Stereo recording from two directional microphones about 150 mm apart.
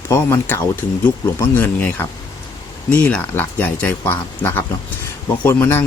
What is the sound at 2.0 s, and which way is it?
Speech, 15° left (ahead or behind).